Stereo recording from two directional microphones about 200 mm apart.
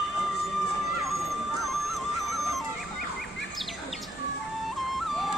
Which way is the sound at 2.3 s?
Centre (ahead or behind).